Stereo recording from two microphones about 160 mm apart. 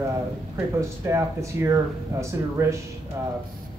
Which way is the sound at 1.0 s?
20° right (ahead or behind).